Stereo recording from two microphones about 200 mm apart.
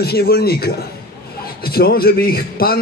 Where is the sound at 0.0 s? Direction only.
50° left (ahead or behind).